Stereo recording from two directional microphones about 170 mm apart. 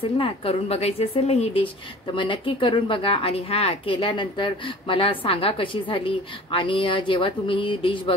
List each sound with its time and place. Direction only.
0.2 s a woman's voice: 35° left (ahead or behind)